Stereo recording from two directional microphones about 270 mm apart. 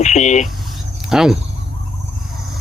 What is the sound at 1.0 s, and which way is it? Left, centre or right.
Speech, centre.